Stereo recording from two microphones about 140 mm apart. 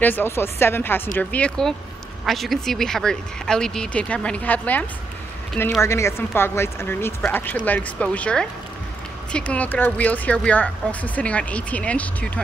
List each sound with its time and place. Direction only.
0.0 s speech: 15° left (ahead or behind)